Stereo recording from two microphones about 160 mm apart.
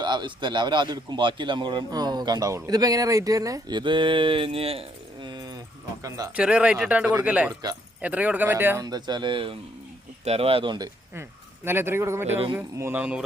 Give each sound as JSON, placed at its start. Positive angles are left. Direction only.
{"t": 0.0, "sound": "a man's voice", "side_deg": -30}
{"t": 6.3, "sound": "a man's voice", "side_deg": -5}
{"t": 11.1, "sound": "a man's voice", "side_deg": -15}